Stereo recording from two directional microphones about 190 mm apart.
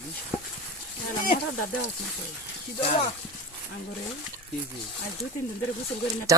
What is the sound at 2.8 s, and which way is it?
Speech, 35° left (ahead or behind).